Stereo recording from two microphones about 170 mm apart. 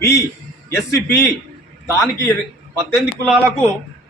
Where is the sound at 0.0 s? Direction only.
15° left (ahead or behind).